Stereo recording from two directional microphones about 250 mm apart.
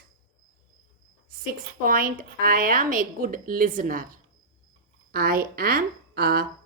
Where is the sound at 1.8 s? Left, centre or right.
Right.